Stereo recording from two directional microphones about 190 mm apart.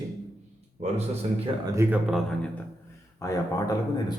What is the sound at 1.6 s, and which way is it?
Speech, 15° right (ahead or behind).